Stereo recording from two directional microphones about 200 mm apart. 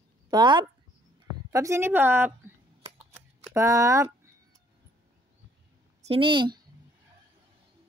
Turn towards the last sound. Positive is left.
turn(degrees=-25)  # may be behind; listen again after turning